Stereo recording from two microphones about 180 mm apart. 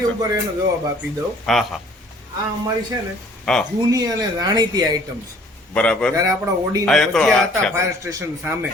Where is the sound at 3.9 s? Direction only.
20° right (ahead or behind).